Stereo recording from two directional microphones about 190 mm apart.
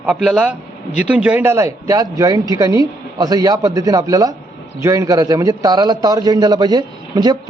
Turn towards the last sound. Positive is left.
turn(degrees=-20)  # may be behind; listen again after turning